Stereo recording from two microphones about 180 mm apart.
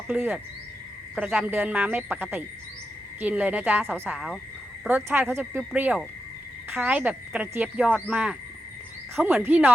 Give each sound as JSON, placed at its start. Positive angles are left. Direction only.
{"t": 0.1, "sound": "speech", "side_deg": -10}
{"t": 7.9, "sound": "speech", "side_deg": 5}
{"t": 8.1, "sound": "speech", "side_deg": -5}